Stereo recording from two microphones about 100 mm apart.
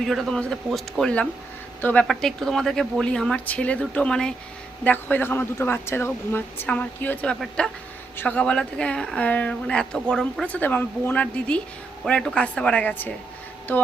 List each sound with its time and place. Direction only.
0.0 s speech: centre (ahead or behind)
1.8 s speech: 15° left (ahead or behind)
2.0 s a man's voice: 5° left (ahead or behind)
10.5 s speech: 15° left (ahead or behind)